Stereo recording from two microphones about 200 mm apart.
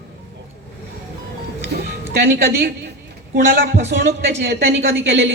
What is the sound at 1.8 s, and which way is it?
A woman's voice, 50° right (ahead or behind).